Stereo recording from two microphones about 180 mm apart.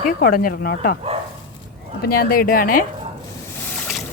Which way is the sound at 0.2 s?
55° left (ahead or behind).